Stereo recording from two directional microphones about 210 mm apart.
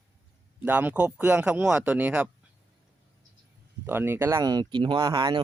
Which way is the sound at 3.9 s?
10° right (ahead or behind).